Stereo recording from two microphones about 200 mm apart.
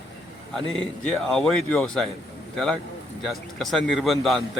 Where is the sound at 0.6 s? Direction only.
75° left (ahead or behind).